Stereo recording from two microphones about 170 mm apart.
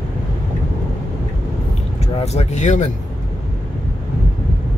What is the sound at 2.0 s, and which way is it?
Speech, 40° left (ahead or behind).